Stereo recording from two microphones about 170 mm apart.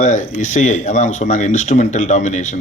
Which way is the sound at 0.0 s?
45° left (ahead or behind).